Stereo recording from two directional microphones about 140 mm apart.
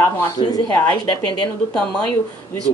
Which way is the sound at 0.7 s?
10° left (ahead or behind).